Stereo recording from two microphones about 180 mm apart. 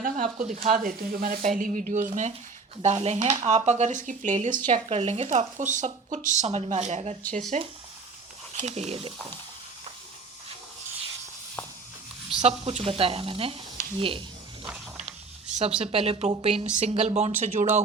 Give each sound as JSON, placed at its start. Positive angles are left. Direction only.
{"t": 0.0, "sound": "speech", "side_deg": -45}
{"t": 4.7, "sound": "speech", "side_deg": -35}
{"t": 12.4, "sound": "speech", "side_deg": -35}
{"t": 15.8, "sound": "speech", "side_deg": -35}